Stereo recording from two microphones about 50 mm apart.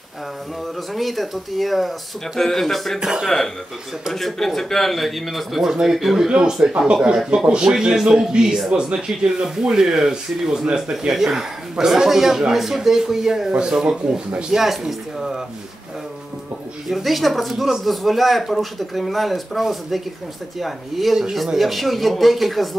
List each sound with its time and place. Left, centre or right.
0.9 s speech: centre
3.0 s speech: centre
4.1 s speech: centre
16.9 s speech: centre